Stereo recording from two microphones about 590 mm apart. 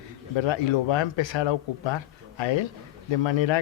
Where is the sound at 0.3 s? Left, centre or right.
Left.